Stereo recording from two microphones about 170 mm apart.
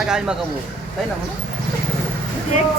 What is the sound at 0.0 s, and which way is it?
Speech, 5° right (ahead or behind).